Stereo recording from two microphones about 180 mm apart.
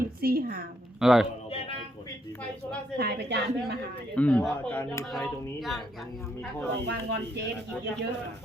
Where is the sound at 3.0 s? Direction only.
65° right (ahead or behind).